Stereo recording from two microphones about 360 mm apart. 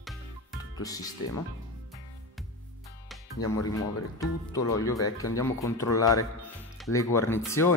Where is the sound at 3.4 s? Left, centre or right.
Left.